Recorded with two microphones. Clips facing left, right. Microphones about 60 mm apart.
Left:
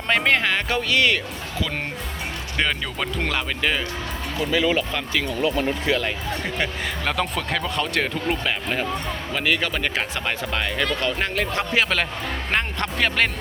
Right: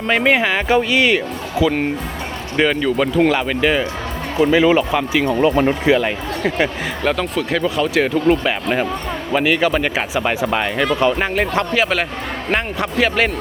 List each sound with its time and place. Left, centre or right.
0.1 s speech: centre
4.5 s speech: right
5.2 s speech: right
5.8 s speech: centre
7.0 s speech: centre